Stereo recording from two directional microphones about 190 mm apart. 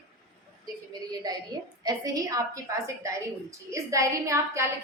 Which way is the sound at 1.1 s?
20° right (ahead or behind).